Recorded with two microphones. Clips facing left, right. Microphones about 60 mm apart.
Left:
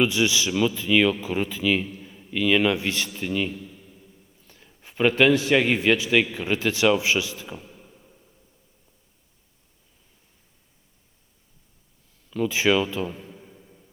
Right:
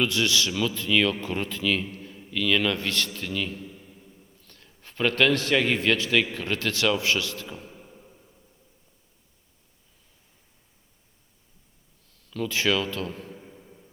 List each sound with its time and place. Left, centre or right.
0.0 s speech: centre
3.6 s a sound: centre
4.4 s a man's voice: centre
7.6 s a sound: centre
12.3 s speech: centre
13.3 s music: centre